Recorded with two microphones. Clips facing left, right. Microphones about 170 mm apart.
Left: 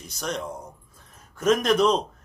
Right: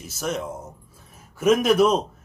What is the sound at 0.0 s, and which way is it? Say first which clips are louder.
A man's voice: right 3 dB; 5° right (ahead or behind).